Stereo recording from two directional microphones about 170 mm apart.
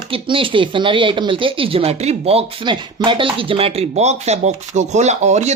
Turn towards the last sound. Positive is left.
turn(degrees=-45)  # may be behind; listen again after turning